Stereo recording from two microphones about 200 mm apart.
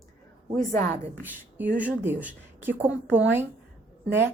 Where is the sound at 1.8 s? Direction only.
10° right (ahead or behind).